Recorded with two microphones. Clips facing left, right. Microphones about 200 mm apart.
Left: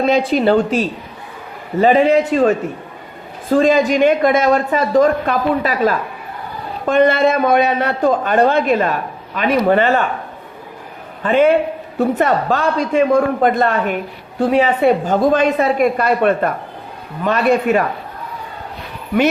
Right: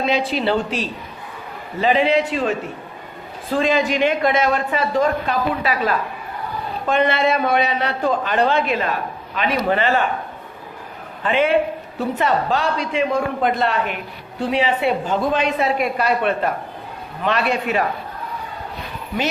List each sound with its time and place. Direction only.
0.0 s a man's voice: 45° left (ahead or behind)
3.5 s a man's voice: 45° left (ahead or behind)
11.2 s a man's voice: 45° left (ahead or behind)